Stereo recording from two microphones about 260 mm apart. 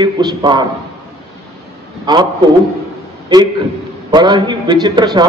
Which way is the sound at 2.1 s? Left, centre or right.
Centre.